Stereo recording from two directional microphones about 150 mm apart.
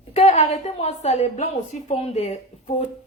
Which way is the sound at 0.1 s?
45° left (ahead or behind).